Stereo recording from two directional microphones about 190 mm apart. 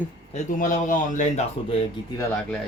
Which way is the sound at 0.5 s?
45° left (ahead or behind).